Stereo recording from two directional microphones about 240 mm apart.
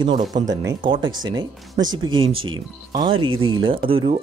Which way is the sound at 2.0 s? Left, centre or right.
Right.